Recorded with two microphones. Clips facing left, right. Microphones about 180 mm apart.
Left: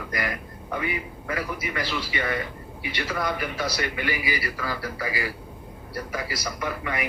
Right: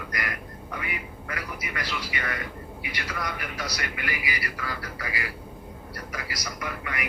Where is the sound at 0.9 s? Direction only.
30° left (ahead or behind).